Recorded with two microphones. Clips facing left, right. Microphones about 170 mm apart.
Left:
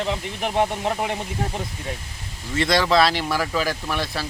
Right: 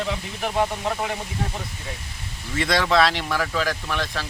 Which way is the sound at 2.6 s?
Centre (ahead or behind).